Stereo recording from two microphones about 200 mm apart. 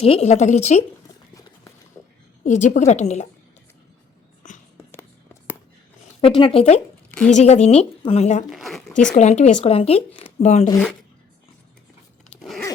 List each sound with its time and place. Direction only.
0.0 s a woman's voice: 30° left (ahead or behind)
2.0 s a sound: 15° left (ahead or behind)
2.4 s a woman's voice: 35° left (ahead or behind)
4.9 s whispering: 10° left (ahead or behind)
6.2 s a woman's voice: 25° left (ahead or behind)
8.4 s speech: centre (ahead or behind)
9.1 s a woman's voice: 35° left (ahead or behind)
12.3 s dog: centre (ahead or behind)